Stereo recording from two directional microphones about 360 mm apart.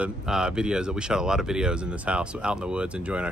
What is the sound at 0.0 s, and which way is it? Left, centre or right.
Speech, centre.